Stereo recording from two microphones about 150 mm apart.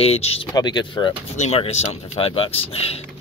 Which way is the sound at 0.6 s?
30° left (ahead or behind).